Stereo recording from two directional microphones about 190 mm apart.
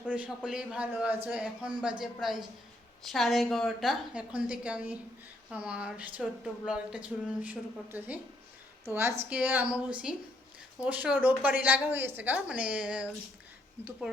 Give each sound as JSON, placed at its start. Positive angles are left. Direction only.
{"t": 0.1, "sound": "a man's voice", "side_deg": -5}
{"t": 9.3, "sound": "speech", "side_deg": -10}